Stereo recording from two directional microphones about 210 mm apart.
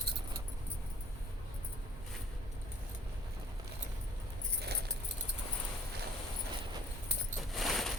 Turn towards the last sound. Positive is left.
turn(degrees=0)  # may be behind; listen again after turning